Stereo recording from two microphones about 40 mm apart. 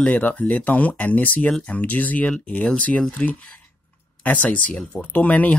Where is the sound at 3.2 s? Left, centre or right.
Left.